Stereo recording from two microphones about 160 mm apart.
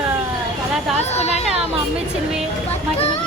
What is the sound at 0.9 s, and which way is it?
Music, 40° left (ahead or behind).